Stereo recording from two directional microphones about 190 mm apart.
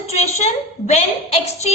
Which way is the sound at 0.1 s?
35° left (ahead or behind).